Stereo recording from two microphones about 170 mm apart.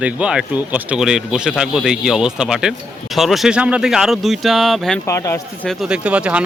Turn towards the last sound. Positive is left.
turn(degrees=-5)  # may be behind; listen again after turning